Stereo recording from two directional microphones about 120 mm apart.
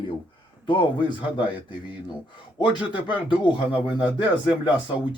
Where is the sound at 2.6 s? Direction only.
10° right (ahead or behind).